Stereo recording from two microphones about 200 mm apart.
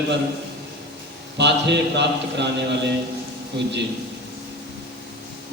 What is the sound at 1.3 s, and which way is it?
A man's voice, 60° right (ahead or behind).